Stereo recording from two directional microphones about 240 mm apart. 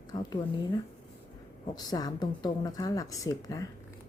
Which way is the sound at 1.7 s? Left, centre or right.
Centre.